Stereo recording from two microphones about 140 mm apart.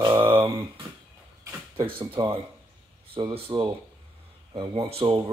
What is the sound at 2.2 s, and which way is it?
Speech, 30° right (ahead or behind).